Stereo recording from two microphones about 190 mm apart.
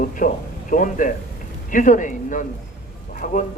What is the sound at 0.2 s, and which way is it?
A man's voice, 50° left (ahead or behind).